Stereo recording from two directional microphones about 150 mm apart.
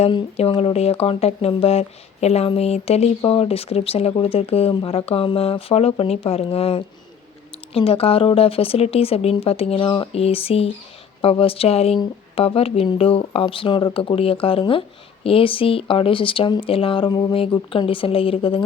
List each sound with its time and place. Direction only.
0.0 s speech: 40° left (ahead or behind)